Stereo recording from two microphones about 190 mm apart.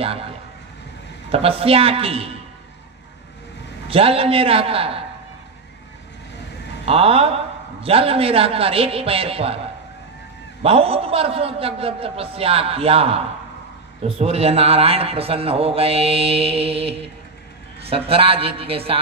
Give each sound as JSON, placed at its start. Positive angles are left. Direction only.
{"t": 1.3, "sound": "a man's voice", "side_deg": -30}
{"t": 3.9, "sound": "a man's voice", "side_deg": -30}
{"t": 6.9, "sound": "a man's voice", "side_deg": -30}
{"t": 10.6, "sound": "a man's voice", "side_deg": -30}